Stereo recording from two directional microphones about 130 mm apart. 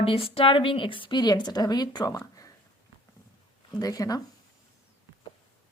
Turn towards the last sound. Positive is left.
turn(degrees=30)  # may be behind; listen again after turning